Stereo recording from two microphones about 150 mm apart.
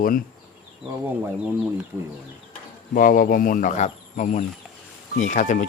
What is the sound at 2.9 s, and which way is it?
Speech, 65° left (ahead or behind).